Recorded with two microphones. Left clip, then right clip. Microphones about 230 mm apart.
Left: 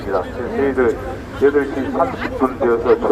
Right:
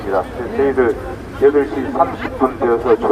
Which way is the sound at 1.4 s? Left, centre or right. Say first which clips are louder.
Right 2 dB; right.